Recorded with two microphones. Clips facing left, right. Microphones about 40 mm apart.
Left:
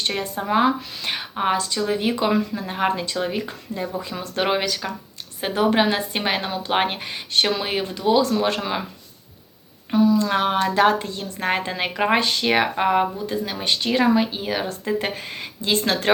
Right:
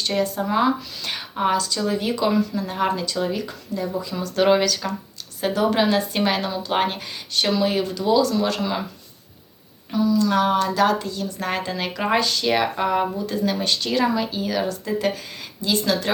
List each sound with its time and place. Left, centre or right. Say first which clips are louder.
0.0 s speech: right 3 dB; left
9.9 s speech: left 1 dB; left